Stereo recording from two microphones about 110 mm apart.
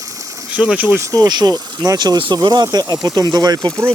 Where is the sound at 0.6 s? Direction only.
15° right (ahead or behind).